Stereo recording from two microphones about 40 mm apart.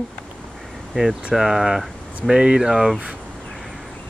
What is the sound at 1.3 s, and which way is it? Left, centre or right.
Speech, centre.